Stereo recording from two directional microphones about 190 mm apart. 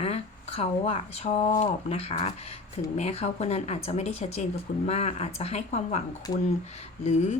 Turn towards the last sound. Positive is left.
turn(degrees=35)  # may be behind; listen again after turning